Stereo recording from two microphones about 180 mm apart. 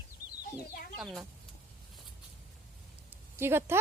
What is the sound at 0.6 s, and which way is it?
Chicken, 60° left (ahead or behind).